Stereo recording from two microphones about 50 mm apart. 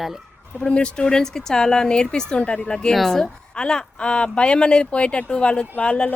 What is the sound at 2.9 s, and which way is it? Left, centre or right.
Speech, centre.